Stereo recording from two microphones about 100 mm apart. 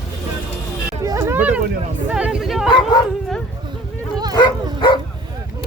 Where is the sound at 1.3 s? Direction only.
15° right (ahead or behind).